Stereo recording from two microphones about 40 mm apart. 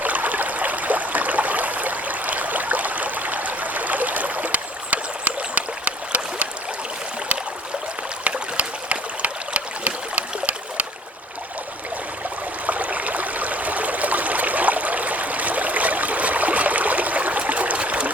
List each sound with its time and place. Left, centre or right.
0.0 s stream: right
8.2 s stream: right
12.6 s stream: right